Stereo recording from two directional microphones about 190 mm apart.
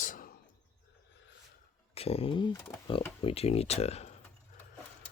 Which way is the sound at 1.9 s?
30° left (ahead or behind).